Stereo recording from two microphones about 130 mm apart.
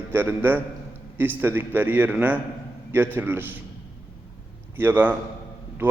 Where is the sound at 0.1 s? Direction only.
15° right (ahead or behind).